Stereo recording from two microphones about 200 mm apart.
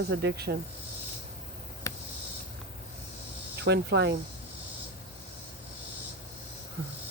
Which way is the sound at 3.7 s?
60° right (ahead or behind).